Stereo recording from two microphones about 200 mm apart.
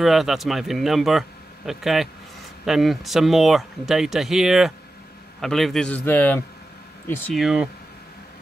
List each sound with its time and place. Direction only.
0.0 s a man's voice: centre (ahead or behind)